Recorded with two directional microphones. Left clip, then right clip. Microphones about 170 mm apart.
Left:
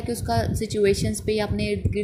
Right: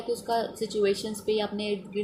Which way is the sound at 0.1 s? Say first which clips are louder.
Left 2 dB; 50° left (ahead or behind).